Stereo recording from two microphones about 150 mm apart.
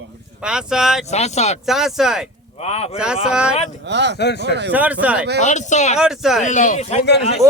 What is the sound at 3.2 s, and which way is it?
Speech, 5° right (ahead or behind).